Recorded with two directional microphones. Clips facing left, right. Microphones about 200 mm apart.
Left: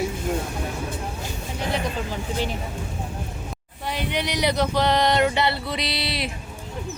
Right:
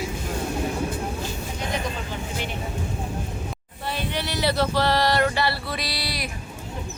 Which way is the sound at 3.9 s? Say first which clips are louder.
Left 2 dB; 15° left (ahead or behind).